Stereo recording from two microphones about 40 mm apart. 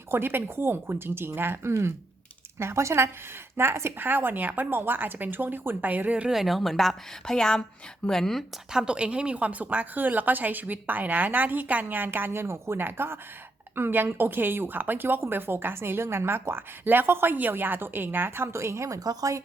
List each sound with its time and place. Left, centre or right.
0.1 s a woman's voice: right
2.6 s speech: right
3.9 s speech: right
6.3 s a woman's voice: centre
7.3 s a woman's voice: centre
8.7 s speech: centre; by 18.5 s right